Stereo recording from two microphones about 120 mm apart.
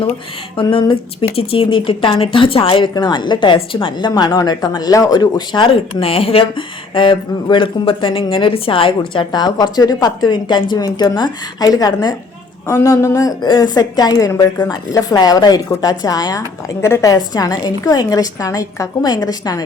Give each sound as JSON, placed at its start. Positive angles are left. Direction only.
{"t": 0.5, "sound": "speech", "side_deg": 45}
{"t": 4.1, "sound": "a woman's voice", "side_deg": 30}